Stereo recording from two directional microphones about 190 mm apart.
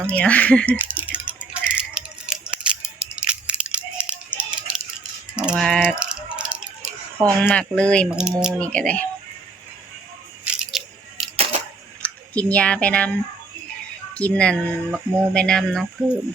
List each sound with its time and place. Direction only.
0.0 s speech: 5° left (ahead or behind)
0.8 s a sound: 10° right (ahead or behind)
5.4 s typing: centre (ahead or behind)
7.4 s speech: 5° left (ahead or behind)
10.4 s biting: 5° right (ahead or behind)
11.5 s a sound: 35° right (ahead or behind)
12.0 s speech: 5° left (ahead or behind)
14.1 s speech: 5° left (ahead or behind)